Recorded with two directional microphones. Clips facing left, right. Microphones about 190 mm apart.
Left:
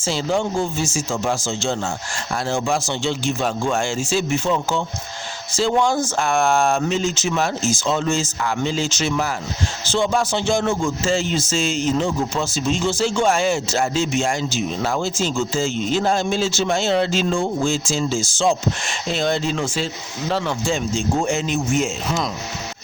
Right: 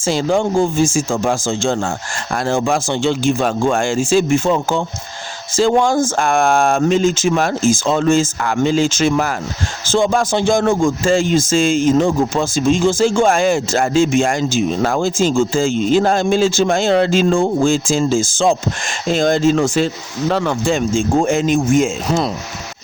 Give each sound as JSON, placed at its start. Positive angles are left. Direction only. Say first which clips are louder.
{"t": 0.0, "sound": "a man's voice", "louder": "right 5 dB", "side_deg": -50}
{"t": 19.7, "sound": "a man's voice", "louder": "right 8 dB", "side_deg": -60}